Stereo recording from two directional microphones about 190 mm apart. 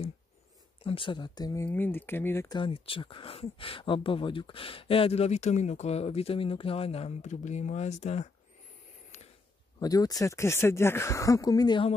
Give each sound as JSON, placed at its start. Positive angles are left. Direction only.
{"t": 0.8, "sound": "speech", "side_deg": 25}
{"t": 9.8, "sound": "speech", "side_deg": 20}